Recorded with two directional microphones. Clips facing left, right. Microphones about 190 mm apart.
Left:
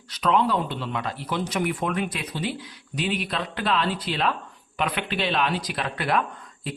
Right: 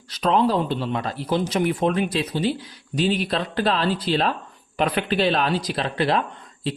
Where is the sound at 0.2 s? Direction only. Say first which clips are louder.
Right 3 dB; 35° right (ahead or behind).